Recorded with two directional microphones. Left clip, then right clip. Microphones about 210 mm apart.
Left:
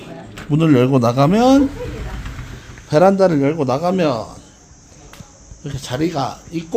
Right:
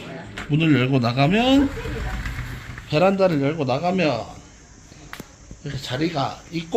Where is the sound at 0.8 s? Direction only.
35° left (ahead or behind).